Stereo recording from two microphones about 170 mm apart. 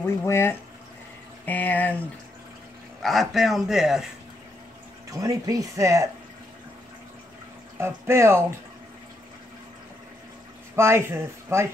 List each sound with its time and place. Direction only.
0.0 s speech: 15° left (ahead or behind)
3.0 s a man's voice: centre (ahead or behind)
5.1 s speech: 20° right (ahead or behind)
7.7 s speech: 15° right (ahead or behind)
10.8 s speech: 15° right (ahead or behind)